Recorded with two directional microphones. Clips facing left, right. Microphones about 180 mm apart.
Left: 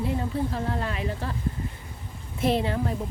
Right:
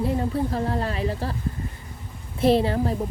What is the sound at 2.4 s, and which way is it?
Speech, 35° right (ahead or behind).